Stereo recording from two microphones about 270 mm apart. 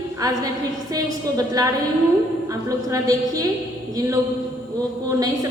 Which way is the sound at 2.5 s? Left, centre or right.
Centre.